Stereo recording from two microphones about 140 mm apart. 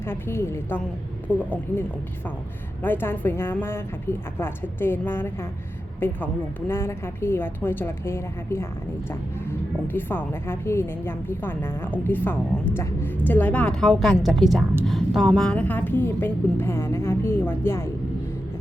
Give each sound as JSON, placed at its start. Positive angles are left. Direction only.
{"t": 0.0, "sound": "a woman's voice", "side_deg": 15}
{"t": 2.8, "sound": "a woman's voice", "side_deg": 15}